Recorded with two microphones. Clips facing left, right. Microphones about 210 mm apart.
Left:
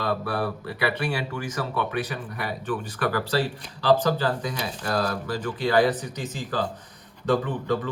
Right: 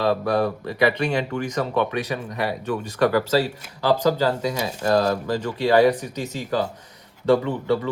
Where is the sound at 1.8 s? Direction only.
25° right (ahead or behind).